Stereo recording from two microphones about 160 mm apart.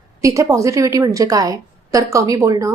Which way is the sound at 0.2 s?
20° right (ahead or behind).